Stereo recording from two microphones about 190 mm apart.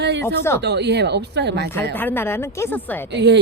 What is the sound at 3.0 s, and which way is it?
Speech, 65° right (ahead or behind).